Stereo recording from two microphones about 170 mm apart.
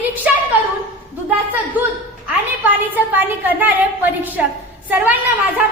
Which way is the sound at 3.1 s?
10° right (ahead or behind).